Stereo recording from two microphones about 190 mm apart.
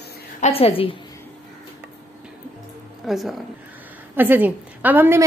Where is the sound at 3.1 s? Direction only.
Centre (ahead or behind).